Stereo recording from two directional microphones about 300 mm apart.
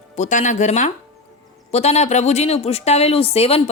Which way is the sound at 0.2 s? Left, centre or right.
Left.